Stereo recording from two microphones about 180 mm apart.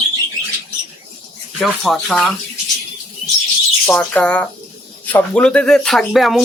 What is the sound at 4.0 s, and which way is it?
Speech, 5° left (ahead or behind).